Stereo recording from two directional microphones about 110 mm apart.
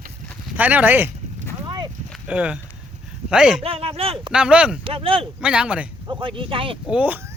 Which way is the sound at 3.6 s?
60° right (ahead or behind).